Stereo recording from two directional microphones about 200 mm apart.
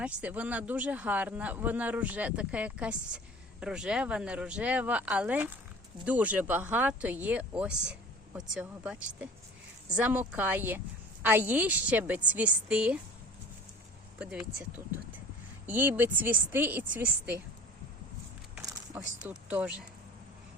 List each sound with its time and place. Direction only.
0.0 s speech: 5° right (ahead or behind)
14.2 s speech: 5° right (ahead or behind)
15.6 s speech: 10° right (ahead or behind)
18.6 s a sound: 20° right (ahead or behind)
19.3 s speech: 5° right (ahead or behind)